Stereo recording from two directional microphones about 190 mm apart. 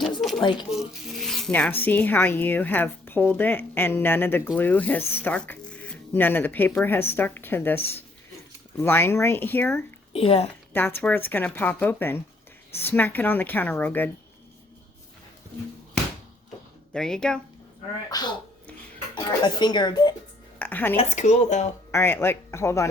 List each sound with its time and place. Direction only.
0.2 s a sound: centre (ahead or behind)
0.4 s speech: 25° left (ahead or behind)
0.7 s speech: centre (ahead or behind)
10.1 s a woman's voice: 30° left (ahead or behind)
10.8 s speech: 10° left (ahead or behind)
16.9 s speech: 5° left (ahead or behind)
18.1 s speech: 20° left (ahead or behind)
20.6 s music: 10° left (ahead or behind)
20.9 s speech: 35° left (ahead or behind)
21.9 s speech: 10° left (ahead or behind)